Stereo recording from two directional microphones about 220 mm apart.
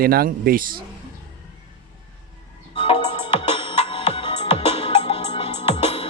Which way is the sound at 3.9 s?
25° left (ahead or behind).